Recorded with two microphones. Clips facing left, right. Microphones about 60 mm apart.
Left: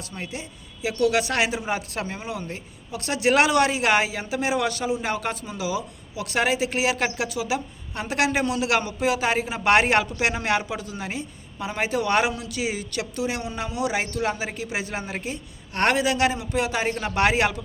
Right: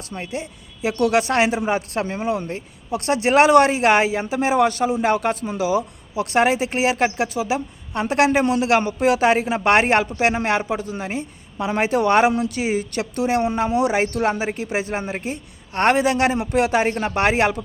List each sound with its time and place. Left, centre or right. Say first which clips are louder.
0.1 s speech: right 8 dB; right
9.6 s speech: right 2 dB; right
11.5 s speech: right 6 dB; right
15.7 s a man's voice: right 4 dB; right
16.0 s speech: right 4 dB; right